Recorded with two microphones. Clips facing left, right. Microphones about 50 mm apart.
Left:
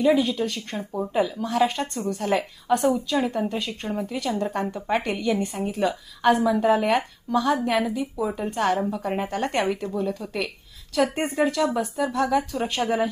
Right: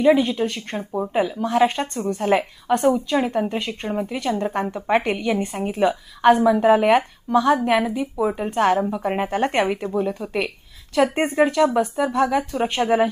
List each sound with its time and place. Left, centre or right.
0.0 s speech: centre
0.3 s a woman's voice: right
2.7 s a woman's voice: centre
3.3 s a woman's voice: right
8.8 s speech: right